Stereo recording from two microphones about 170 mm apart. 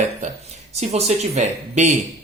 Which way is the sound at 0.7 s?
40° right (ahead or behind).